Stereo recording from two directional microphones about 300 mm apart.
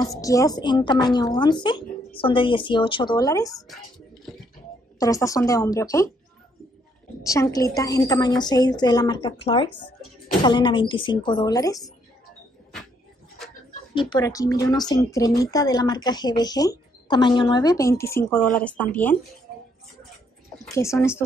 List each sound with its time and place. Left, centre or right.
0.0 s speech: centre
4.9 s speech: centre
7.2 s speech: centre
13.9 s speech: centre
20.5 s speech: centre